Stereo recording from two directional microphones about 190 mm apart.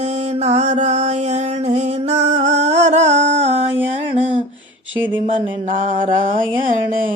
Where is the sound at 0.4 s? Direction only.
35° right (ahead or behind).